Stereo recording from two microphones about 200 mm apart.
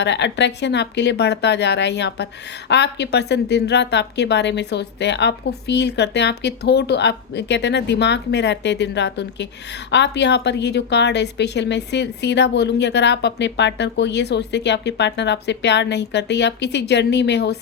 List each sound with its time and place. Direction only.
0.0 s speech: 60° left (ahead or behind)